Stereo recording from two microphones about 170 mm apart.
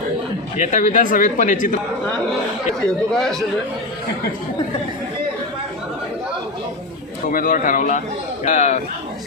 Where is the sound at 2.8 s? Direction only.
5° left (ahead or behind).